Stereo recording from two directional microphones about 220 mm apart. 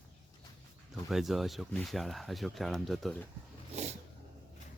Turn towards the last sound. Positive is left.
turn(degrees=-30)  # may be behind; listen again after turning